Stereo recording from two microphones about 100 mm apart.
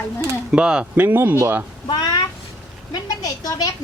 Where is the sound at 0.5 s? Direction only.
10° right (ahead or behind).